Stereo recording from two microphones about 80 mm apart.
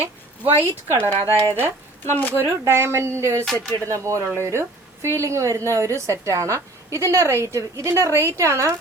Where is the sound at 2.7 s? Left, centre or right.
Right.